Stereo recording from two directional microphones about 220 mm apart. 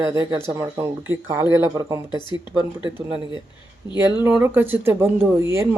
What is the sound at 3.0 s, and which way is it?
Speech, 5° right (ahead or behind).